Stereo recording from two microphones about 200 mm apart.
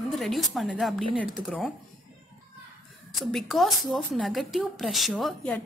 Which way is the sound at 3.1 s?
Centre (ahead or behind).